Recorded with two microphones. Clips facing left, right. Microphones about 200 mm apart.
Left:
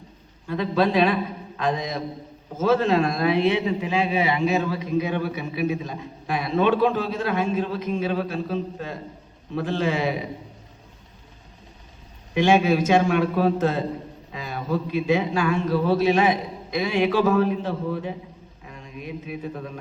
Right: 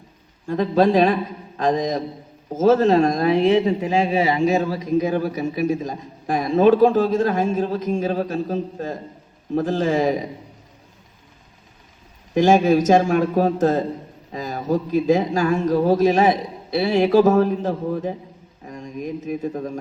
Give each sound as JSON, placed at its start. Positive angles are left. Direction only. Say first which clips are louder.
{"t": 0.4, "sound": "a man's voice", "louder": "right 5 dB", "side_deg": -40}
{"t": 12.3, "sound": "a man's voice", "louder": "right 4 dB", "side_deg": -40}